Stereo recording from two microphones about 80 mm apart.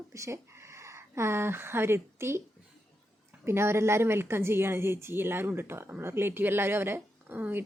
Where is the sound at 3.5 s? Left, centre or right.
Right.